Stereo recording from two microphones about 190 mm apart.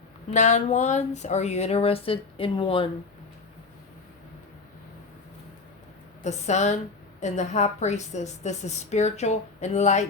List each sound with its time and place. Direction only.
0.3 s a woman's voice: 40° left (ahead or behind)
6.2 s a woman's voice: 40° left (ahead or behind)